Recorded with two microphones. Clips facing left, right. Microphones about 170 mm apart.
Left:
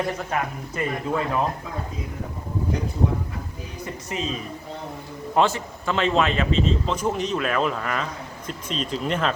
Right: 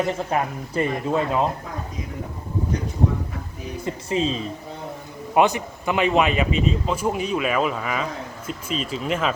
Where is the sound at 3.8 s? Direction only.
30° right (ahead or behind).